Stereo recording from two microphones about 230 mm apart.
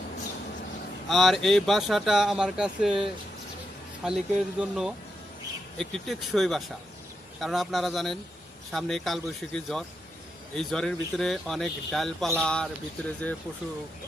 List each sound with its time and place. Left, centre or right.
1.0 s speech: centre